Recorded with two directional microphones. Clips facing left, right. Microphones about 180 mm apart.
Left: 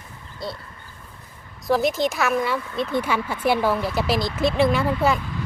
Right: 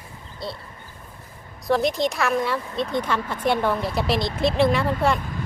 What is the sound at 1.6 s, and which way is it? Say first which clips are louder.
A woman's voice: left 1 dB; centre (ahead or behind).